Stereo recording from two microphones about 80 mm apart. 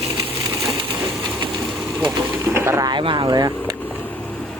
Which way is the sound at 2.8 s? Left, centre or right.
Right.